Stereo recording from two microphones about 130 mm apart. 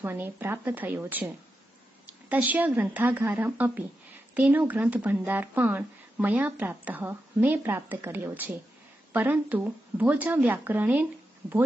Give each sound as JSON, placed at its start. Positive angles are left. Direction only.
{"t": 0.0, "sound": "speech", "side_deg": -15}